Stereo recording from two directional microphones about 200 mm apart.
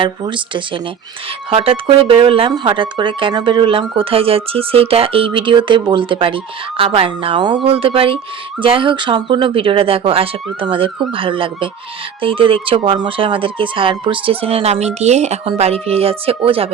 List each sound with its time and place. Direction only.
0.0 s speech: 25° right (ahead or behind)